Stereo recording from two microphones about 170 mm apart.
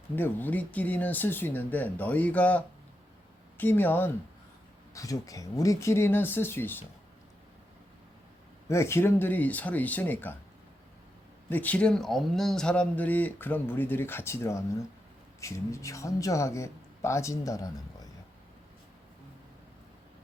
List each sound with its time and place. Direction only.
0.2 s speech: 10° left (ahead or behind)
8.6 s speech: 15° left (ahead or behind)
11.4 s speech: 10° left (ahead or behind)